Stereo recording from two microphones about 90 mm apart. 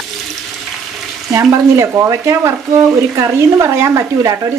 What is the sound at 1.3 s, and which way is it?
Speech, 35° right (ahead or behind).